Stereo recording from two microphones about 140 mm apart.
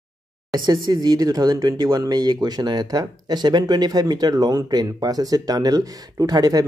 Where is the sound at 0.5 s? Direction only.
30° right (ahead or behind).